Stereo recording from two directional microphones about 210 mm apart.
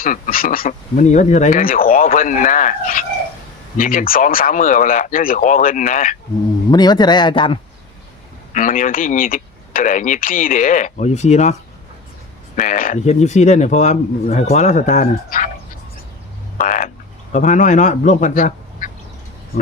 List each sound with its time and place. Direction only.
0.0 s speech: 40° left (ahead or behind)
6.7 s speech: 20° left (ahead or behind)
8.5 s speech: 40° left (ahead or behind)
12.5 s speech: 40° left (ahead or behind)
16.6 s frog: 40° left (ahead or behind)
17.3 s speech: 35° left (ahead or behind)